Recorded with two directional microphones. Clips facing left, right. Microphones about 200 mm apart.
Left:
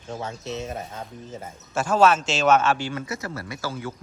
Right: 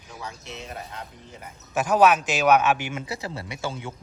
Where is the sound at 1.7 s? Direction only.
15° right (ahead or behind).